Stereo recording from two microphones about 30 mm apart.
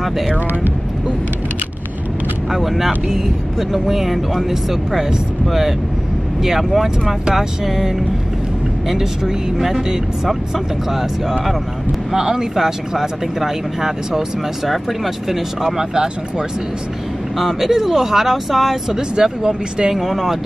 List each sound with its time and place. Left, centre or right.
0.3 s speech: right
2.5 s speech: centre
15.9 s speech: right
17.4 s speech: centre
18.9 s speech: right